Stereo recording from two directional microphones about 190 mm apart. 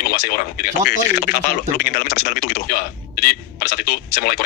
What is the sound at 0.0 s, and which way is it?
Speech, 50° left (ahead or behind).